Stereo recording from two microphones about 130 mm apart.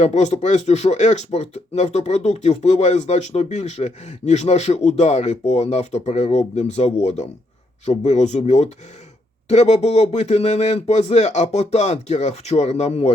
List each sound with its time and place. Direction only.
0.0 s speech: 60° left (ahead or behind)